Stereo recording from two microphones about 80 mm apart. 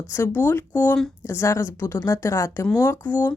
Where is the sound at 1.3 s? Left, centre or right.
Left.